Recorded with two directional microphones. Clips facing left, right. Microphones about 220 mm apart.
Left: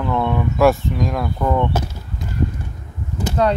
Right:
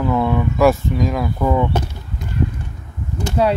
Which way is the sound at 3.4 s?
10° right (ahead or behind).